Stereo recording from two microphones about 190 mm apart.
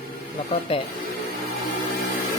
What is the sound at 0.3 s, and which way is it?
Speech, 30° left (ahead or behind).